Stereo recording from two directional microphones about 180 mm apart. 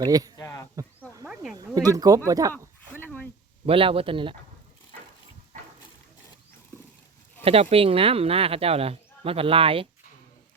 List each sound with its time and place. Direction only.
0.0 s a man's voice: 20° right (ahead or behind)
0.3 s a sound: 20° left (ahead or behind)
1.3 s snake: centre (ahead or behind)
1.5 s speech: 20° right (ahead or behind)
2.5 s a sound: 10° left (ahead or behind)
3.7 s a man's voice: 30° right (ahead or behind)
7.4 s speech: 35° right (ahead or behind)